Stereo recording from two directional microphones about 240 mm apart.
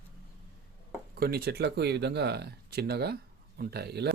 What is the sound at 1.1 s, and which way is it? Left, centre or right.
Speech, right.